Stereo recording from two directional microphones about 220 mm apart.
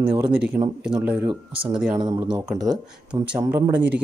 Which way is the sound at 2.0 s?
20° right (ahead or behind).